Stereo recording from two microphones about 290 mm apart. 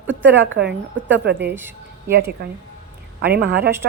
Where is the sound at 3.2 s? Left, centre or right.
Right.